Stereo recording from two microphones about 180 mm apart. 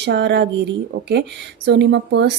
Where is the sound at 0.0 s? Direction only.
70° right (ahead or behind).